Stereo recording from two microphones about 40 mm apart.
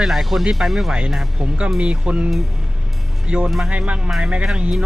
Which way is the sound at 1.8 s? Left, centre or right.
Right.